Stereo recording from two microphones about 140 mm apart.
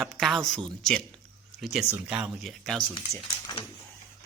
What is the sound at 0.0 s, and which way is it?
Speech, centre (ahead or behind).